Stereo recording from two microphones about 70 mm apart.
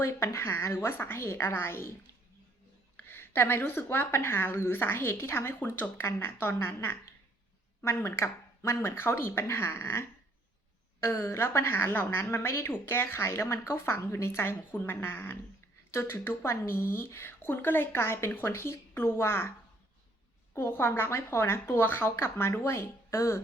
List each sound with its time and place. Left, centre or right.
0.0 s a woman's voice: left
3.0 s a woman's voice: left